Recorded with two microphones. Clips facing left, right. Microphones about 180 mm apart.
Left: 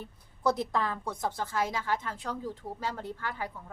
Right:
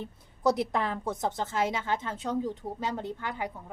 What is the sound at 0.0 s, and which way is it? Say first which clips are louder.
Speech: right 3 dB; 20° right (ahead or behind).